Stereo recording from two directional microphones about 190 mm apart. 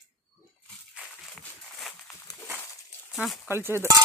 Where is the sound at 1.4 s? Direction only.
5° left (ahead or behind).